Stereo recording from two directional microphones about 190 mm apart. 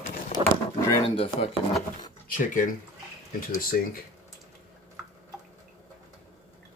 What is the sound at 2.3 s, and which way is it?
Speech, 45° left (ahead or behind).